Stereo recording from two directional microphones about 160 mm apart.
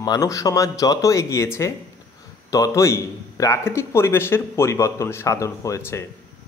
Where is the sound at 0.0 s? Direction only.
25° left (ahead or behind).